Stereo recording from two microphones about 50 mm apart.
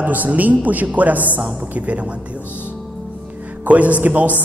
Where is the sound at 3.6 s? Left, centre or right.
Right.